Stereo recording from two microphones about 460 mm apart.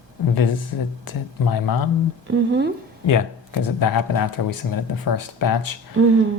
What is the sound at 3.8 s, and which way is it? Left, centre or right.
Speech, left.